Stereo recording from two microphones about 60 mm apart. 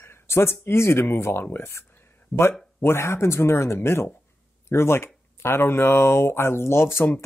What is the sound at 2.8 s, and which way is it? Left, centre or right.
Speech, left.